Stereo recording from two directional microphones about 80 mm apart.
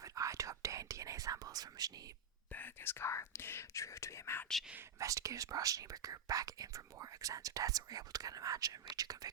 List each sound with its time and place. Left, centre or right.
0.0 s whispering: right
2.5 s speech: left
4.9 s speech: right